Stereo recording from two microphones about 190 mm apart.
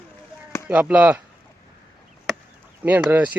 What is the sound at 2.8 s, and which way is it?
Speech, 10° right (ahead or behind).